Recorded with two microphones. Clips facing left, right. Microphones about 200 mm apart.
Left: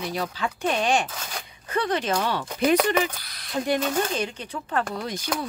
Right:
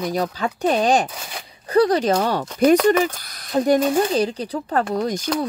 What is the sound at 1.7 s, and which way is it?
Speech, 40° right (ahead or behind).